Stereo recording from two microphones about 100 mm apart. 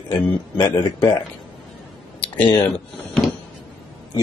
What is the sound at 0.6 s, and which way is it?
Speech, 45° left (ahead or behind).